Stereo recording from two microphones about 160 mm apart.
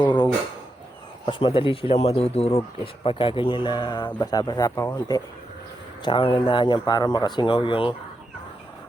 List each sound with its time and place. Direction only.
0.0 s a sound: 25° left (ahead or behind)
1.2 s speech: 30° left (ahead or behind)
6.1 s speech: 30° left (ahead or behind)